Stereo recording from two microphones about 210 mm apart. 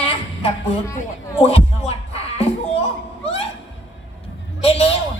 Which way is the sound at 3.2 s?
30° left (ahead or behind).